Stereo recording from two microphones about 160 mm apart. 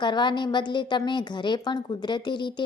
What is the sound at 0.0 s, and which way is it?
A woman's voice, 30° left (ahead or behind).